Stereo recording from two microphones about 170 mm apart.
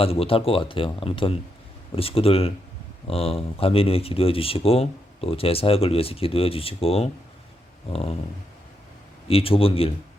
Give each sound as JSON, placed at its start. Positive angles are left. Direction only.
{"t": 0.0, "sound": "speech", "side_deg": 35}
{"t": 9.2, "sound": "speech", "side_deg": 35}